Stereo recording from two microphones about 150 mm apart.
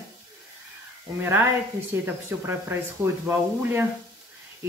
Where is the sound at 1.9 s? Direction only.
15° right (ahead or behind).